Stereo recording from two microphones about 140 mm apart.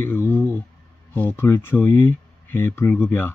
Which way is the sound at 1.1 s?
15° left (ahead or behind).